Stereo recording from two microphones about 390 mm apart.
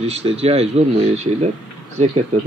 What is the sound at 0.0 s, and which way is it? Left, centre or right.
Speech, centre.